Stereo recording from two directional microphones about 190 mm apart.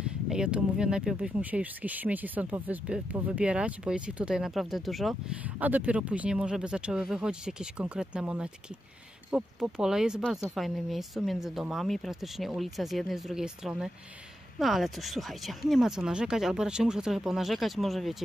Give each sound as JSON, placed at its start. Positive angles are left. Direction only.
{"t": 0.3, "sound": "speech", "side_deg": -5}